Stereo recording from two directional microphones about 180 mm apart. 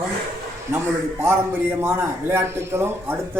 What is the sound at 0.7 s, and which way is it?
A man's voice, 15° right (ahead or behind).